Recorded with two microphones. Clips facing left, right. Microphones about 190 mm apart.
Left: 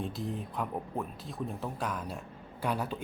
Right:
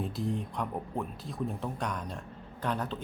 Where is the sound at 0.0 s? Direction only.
Centre (ahead or behind).